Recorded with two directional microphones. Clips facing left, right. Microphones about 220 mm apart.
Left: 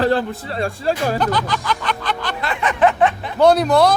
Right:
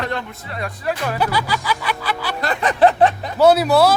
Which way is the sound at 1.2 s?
10° right (ahead or behind).